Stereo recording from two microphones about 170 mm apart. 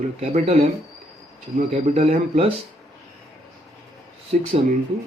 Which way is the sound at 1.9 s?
40° right (ahead or behind).